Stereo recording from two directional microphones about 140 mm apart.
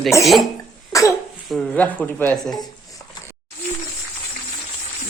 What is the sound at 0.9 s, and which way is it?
Cough, 25° left (ahead or behind).